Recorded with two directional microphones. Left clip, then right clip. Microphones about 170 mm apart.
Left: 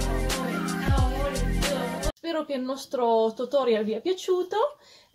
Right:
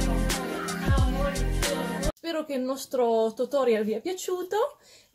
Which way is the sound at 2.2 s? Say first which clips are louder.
Left 1 dB; 15° right (ahead or behind).